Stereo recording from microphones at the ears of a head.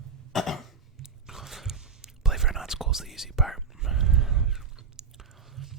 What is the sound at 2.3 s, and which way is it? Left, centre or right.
Whispering, centre.